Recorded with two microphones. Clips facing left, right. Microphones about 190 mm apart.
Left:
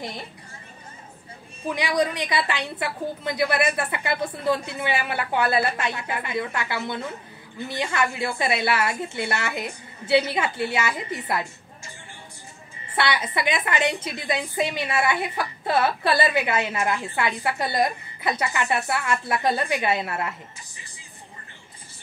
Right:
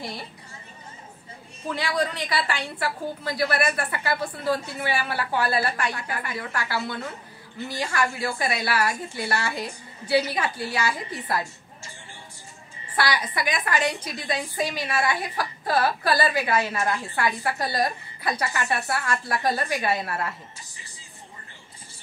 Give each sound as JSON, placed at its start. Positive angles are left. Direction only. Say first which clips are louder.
{"t": 1.7, "sound": "a woman's voice", "louder": "left 3 dB", "side_deg": 15}
{"t": 12.9, "sound": "a woman's voice", "louder": "left 1 dB", "side_deg": 25}